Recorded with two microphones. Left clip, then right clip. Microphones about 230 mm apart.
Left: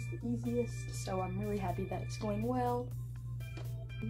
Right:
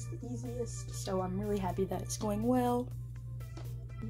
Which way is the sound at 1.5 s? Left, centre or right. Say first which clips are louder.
Right 4 dB; right.